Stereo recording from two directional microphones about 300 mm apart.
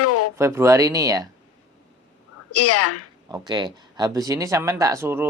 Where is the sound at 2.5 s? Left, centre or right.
Left.